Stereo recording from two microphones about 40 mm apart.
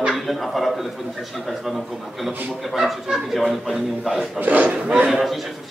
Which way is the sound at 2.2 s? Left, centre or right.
Centre.